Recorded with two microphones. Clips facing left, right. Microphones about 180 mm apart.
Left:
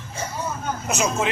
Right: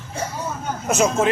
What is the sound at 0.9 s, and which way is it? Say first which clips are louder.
Speech: right 6 dB; 55° right (ahead or behind).